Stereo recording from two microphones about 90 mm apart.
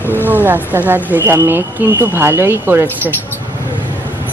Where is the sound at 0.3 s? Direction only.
20° right (ahead or behind).